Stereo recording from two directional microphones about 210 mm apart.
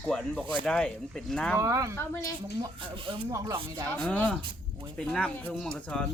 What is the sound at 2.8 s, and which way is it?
Speech, 25° right (ahead or behind).